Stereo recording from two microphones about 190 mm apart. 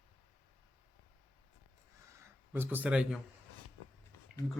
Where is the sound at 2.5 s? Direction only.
10° right (ahead or behind).